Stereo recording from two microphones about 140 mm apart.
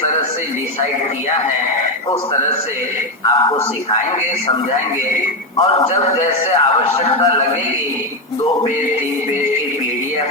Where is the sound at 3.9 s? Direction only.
55° left (ahead or behind).